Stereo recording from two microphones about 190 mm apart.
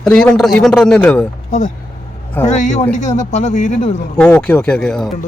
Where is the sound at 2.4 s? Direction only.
40° left (ahead or behind).